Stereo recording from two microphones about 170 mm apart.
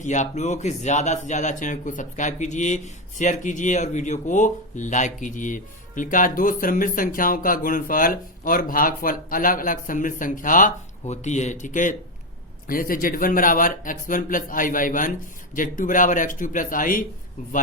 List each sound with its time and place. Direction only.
0.0 s speech: 45° left (ahead or behind)